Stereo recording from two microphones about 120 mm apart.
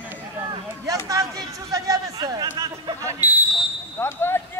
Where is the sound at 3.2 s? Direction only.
15° right (ahead or behind).